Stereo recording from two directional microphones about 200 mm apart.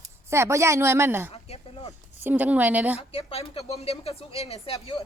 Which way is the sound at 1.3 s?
30° left (ahead or behind).